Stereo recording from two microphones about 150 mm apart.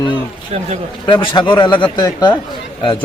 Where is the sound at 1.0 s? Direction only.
30° left (ahead or behind).